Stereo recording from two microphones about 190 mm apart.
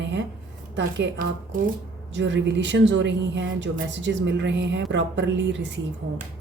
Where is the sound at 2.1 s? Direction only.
70° right (ahead or behind).